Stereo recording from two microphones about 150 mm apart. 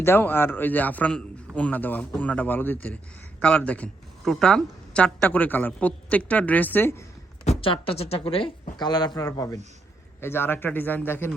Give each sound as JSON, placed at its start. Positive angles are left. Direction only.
{"t": 0.0, "sound": "a woman's voice", "side_deg": 15}
{"t": 7.6, "sound": "a woman's voice", "side_deg": 40}